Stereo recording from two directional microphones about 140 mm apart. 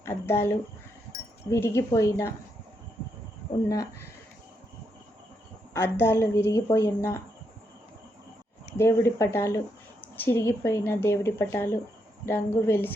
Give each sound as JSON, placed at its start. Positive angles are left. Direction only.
{"t": 0.0, "sound": "a sound", "side_deg": 15}
{"t": 1.5, "sound": "a woman's voice", "side_deg": 15}
{"t": 5.7, "sound": "a woman's voice", "side_deg": 20}
{"t": 8.8, "sound": "a woman's voice", "side_deg": 20}